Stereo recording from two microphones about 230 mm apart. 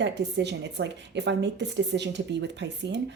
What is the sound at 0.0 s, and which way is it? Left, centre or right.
A woman's voice, right.